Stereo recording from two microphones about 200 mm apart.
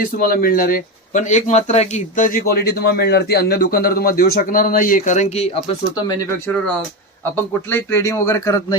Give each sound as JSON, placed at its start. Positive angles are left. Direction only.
{"t": 0.0, "sound": "speech", "side_deg": 45}
{"t": 7.7, "sound": "speech", "side_deg": 10}